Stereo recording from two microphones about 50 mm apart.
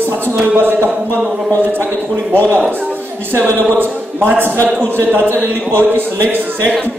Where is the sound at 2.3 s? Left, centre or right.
Right.